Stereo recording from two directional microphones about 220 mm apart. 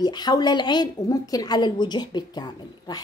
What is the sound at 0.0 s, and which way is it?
A woman's voice, 20° left (ahead or behind).